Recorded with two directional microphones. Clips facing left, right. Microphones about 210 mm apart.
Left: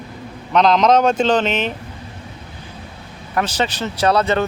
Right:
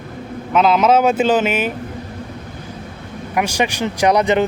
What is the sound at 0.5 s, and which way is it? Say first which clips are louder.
Speech: even; 5° right (ahead or behind).